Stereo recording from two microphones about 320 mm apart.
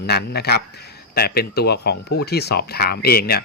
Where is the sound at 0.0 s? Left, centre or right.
Left.